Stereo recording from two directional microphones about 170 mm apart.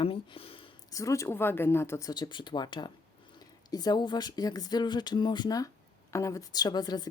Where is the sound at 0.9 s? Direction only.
20° left (ahead or behind).